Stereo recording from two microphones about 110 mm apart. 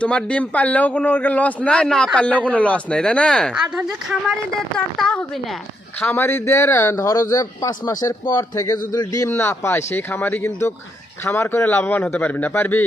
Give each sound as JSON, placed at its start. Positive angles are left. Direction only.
{"t": 0.0, "sound": "a man's voice", "side_deg": 10}
{"t": 4.9, "sound": "speech", "side_deg": 5}
{"t": 6.0, "sound": "a man's voice", "side_deg": 15}